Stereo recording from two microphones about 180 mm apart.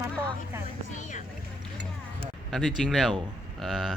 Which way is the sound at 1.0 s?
45° left (ahead or behind).